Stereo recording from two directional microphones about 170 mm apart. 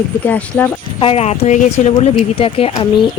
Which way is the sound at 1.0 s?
35° left (ahead or behind).